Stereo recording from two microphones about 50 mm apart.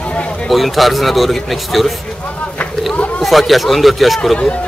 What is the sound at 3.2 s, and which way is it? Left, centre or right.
A man's voice, centre.